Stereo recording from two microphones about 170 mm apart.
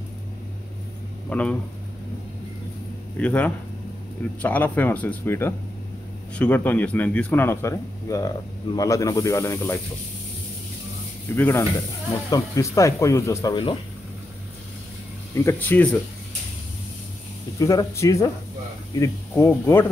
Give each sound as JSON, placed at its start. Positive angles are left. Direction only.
{"t": 1.3, "sound": "a man's voice", "side_deg": 5}
{"t": 3.2, "sound": "a man's voice", "side_deg": 10}
{"t": 11.3, "sound": "a man's voice", "side_deg": 15}
{"t": 15.3, "sound": "a man's voice", "side_deg": 15}
{"t": 17.6, "sound": "a man's voice", "side_deg": 20}